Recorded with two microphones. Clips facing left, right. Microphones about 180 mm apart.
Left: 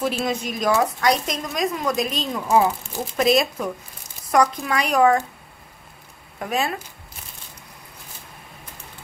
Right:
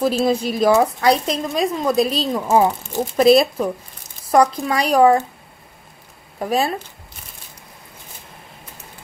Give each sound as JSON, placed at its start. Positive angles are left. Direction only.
{"t": 0.0, "sound": "a woman's voice", "side_deg": -30}
{"t": 6.4, "sound": "a woman's voice", "side_deg": -35}